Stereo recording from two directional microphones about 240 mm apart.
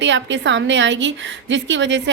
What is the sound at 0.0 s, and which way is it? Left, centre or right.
A woman's voice, right.